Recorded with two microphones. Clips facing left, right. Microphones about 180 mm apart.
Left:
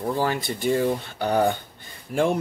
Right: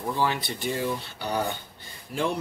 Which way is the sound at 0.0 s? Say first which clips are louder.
Left 3 dB; 45° left (ahead or behind).